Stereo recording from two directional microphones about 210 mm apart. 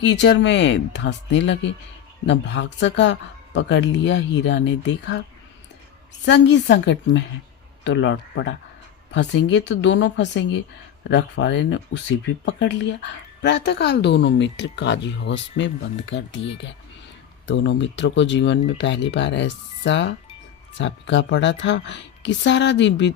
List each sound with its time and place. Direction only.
0.0 s speech: 55° left (ahead or behind)
6.2 s speech: 55° left (ahead or behind)